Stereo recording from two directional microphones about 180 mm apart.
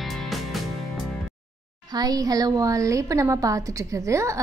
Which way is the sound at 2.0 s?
20° right (ahead or behind).